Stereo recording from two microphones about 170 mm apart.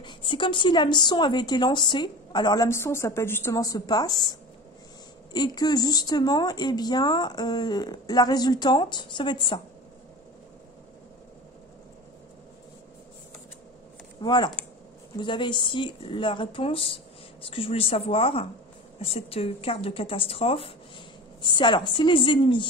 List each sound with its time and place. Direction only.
0.0 s speech: 30° left (ahead or behind)
5.3 s speech: 25° left (ahead or behind)
14.2 s speech: 25° left (ahead or behind)